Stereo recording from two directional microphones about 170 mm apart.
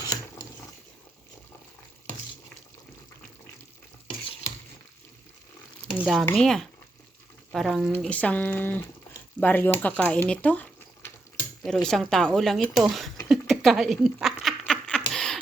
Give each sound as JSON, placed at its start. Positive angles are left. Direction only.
{"t": 0.0, "sound": "mechanisms", "side_deg": 20}
{"t": 6.0, "sound": "speech", "side_deg": 0}
{"t": 13.2, "sound": "a sound", "side_deg": 0}